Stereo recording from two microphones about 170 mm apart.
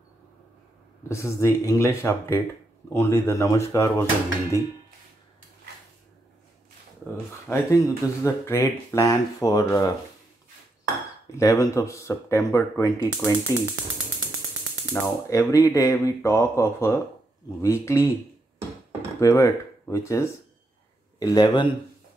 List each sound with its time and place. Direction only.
1.0 s speech: 15° left (ahead or behind)
7.4 s speech: 15° left (ahead or behind)
11.3 s speech: 20° left (ahead or behind)
15.0 s speech: 20° left (ahead or behind)
19.1 s speech: 20° left (ahead or behind)